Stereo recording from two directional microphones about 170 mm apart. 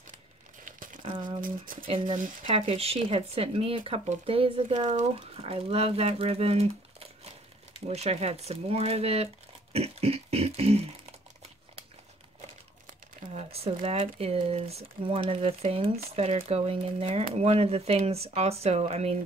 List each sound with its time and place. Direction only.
1.0 s speech: 30° right (ahead or behind)
1.4 s speech: 55° right (ahead or behind)
2.4 s speech: 35° right (ahead or behind)
7.9 s crumpling: 40° right (ahead or behind)
13.3 s crumpling: 35° right (ahead or behind)
13.8 s speech: 35° right (ahead or behind)